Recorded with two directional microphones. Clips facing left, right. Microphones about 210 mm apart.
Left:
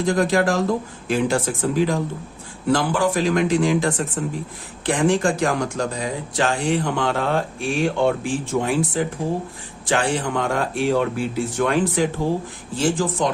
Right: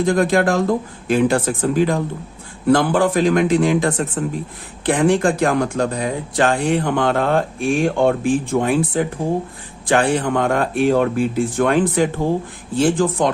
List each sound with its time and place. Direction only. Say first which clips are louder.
0.0 s speech: right 3 dB; 55° right (ahead or behind)